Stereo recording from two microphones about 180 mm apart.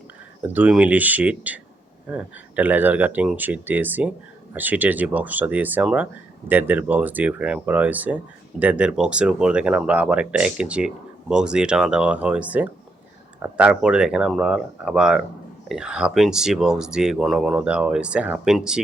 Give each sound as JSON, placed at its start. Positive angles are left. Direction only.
{"t": 0.4, "sound": "speech", "side_deg": -10}